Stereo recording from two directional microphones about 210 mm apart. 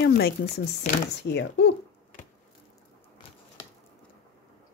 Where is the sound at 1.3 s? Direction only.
55° left (ahead or behind).